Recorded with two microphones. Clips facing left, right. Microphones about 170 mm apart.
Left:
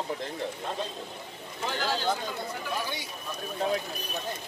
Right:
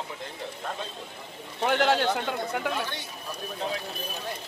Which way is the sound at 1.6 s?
75° right (ahead or behind).